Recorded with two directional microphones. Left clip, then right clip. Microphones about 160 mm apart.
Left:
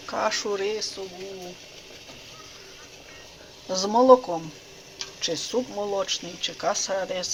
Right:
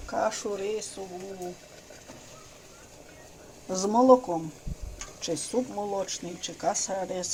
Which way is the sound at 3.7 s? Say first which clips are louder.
Left 3 dB; 20° right (ahead or behind).